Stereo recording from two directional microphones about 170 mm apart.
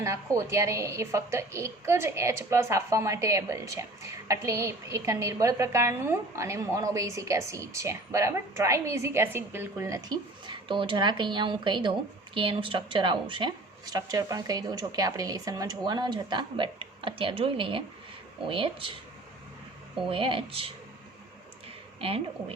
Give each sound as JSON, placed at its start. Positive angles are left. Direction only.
{"t": 0.0, "sound": "a woman's voice", "side_deg": -15}
{"t": 20.1, "sound": "speech", "side_deg": -30}
{"t": 22.0, "sound": "speech", "side_deg": -35}